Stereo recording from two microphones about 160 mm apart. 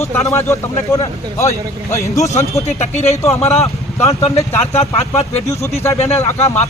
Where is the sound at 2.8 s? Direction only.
45° left (ahead or behind).